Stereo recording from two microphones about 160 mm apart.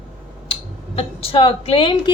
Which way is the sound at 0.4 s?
35° left (ahead or behind).